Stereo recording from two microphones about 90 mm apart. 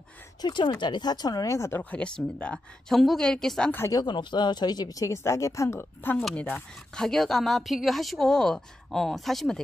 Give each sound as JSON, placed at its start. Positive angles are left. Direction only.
{"t": 0.4, "sound": "speech", "side_deg": 55}
{"t": 1.8, "sound": "a woman's voice", "side_deg": 15}
{"t": 3.9, "sound": "speech", "side_deg": 55}
{"t": 7.0, "sound": "a woman's voice", "side_deg": 5}